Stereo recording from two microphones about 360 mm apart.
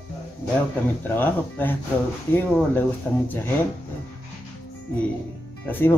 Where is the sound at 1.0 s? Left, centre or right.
Centre.